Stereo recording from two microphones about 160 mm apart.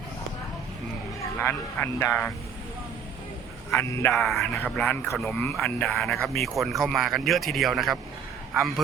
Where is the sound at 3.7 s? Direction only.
15° left (ahead or behind).